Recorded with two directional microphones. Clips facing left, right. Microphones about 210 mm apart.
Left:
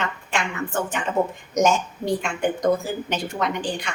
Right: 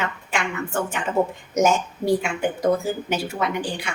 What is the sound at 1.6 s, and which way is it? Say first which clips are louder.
A woman's voice: right 1 dB; 5° right (ahead or behind).